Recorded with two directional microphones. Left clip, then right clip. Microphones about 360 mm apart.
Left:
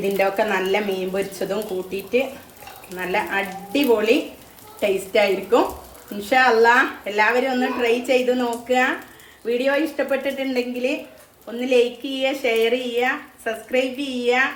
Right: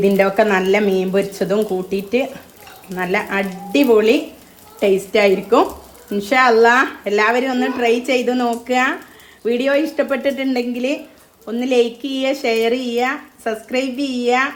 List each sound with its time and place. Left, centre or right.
0.2 s speech: right